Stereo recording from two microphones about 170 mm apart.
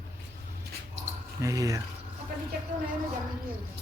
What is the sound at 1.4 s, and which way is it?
Speech, 20° right (ahead or behind).